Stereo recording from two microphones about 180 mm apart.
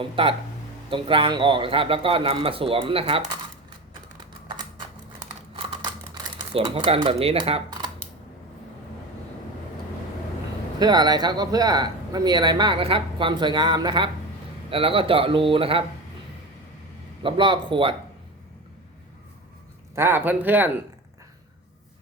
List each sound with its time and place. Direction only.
0.0 s speech: 30° right (ahead or behind)
6.5 s speech: 30° right (ahead or behind)
10.8 s speech: 25° right (ahead or behind)
17.2 s speech: 25° right (ahead or behind)
20.0 s speech: 10° right (ahead or behind)